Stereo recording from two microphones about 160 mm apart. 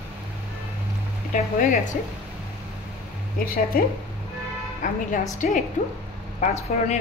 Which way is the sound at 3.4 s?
65° left (ahead or behind).